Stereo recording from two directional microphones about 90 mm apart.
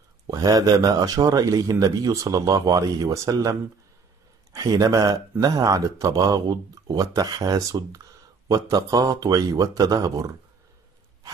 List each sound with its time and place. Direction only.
0.3 s speech: 45° right (ahead or behind)